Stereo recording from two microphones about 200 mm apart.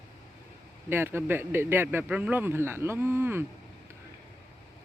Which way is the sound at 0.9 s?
10° right (ahead or behind).